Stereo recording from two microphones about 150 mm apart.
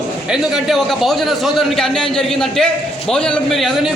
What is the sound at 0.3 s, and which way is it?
A man's voice, centre (ahead or behind).